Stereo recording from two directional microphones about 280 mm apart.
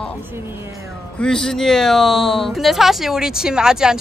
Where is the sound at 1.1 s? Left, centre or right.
Centre.